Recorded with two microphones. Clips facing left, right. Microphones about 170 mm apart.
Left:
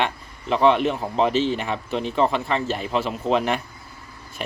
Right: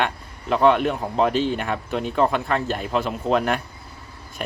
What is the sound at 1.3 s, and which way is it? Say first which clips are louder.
Speech: left 1 dB; 50° right (ahead or behind).